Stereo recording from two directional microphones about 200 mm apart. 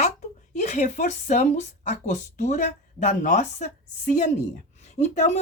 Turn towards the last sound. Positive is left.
turn(degrees=35)  # may be behind; listen again after turning